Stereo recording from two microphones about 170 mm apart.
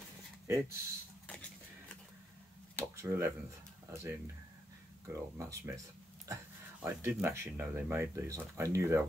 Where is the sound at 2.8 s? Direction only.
15° right (ahead or behind).